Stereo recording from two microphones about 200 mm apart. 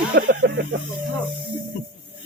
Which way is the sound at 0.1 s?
50° right (ahead or behind).